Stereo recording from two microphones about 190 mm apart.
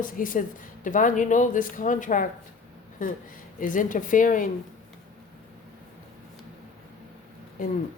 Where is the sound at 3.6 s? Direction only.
45° left (ahead or behind).